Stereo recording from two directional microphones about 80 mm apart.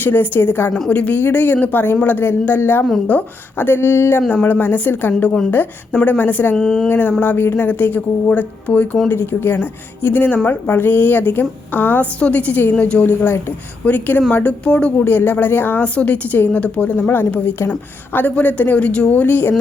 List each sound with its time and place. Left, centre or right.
0.0 s speech: left
0.9 s a woman's voice: centre
6.6 s speech: centre
6.8 s a woman's voice: left
19.2 s speech: left